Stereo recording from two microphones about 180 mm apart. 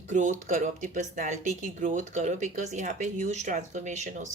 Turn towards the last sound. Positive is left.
turn(degrees=-40)  # may be behind; listen again after turning